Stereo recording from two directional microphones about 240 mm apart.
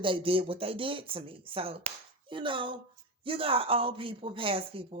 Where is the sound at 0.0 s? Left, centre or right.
Right.